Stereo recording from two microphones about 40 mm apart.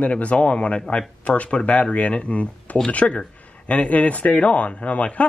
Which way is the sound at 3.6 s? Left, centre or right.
Left.